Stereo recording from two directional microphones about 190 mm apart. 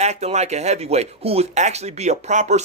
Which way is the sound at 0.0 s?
35° right (ahead or behind).